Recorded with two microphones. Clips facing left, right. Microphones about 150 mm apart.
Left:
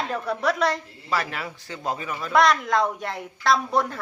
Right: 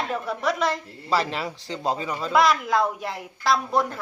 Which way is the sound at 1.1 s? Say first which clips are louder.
Right 3 dB; 30° right (ahead or behind).